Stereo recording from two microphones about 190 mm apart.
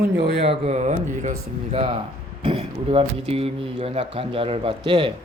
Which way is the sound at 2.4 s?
25° right (ahead or behind).